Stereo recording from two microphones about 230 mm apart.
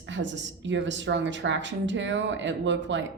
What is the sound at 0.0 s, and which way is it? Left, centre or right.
Speech, right.